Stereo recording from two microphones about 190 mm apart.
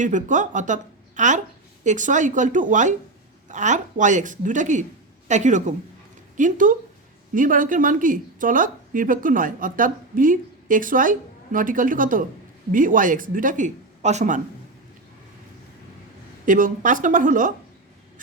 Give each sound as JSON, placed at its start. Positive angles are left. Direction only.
{"t": 0.0, "sound": "a woman's voice", "side_deg": -40}
{"t": 16.5, "sound": "a woman's voice", "side_deg": -45}